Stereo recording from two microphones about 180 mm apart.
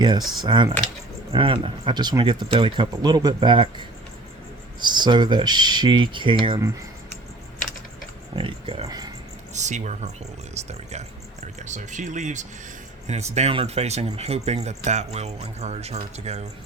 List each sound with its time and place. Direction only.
0.3 s speech: 25° right (ahead or behind)
8.4 s speech: 30° right (ahead or behind)
9.5 s speech: 40° right (ahead or behind)